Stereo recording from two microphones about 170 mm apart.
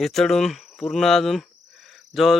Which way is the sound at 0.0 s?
Centre (ahead or behind).